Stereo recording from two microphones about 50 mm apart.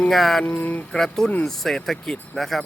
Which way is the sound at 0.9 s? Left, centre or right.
Centre.